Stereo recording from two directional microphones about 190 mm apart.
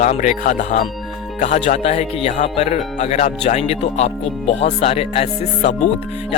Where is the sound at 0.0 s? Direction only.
40° left (ahead or behind).